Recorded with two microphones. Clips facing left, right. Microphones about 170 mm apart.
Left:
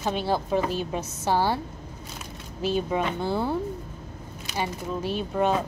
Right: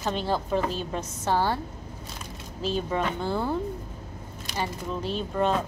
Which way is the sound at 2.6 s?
10° left (ahead or behind).